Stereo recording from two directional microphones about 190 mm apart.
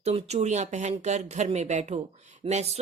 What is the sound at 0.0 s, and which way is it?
Speech, 35° right (ahead or behind).